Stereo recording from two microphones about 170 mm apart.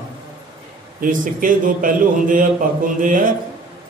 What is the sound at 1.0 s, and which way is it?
A man's voice, 50° right (ahead or behind).